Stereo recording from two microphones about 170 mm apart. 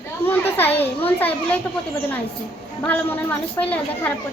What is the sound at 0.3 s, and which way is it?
Children playing, 10° left (ahead or behind).